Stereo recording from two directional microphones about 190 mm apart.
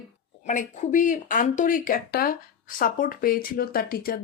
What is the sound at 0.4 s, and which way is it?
Speech, 40° left (ahead or behind).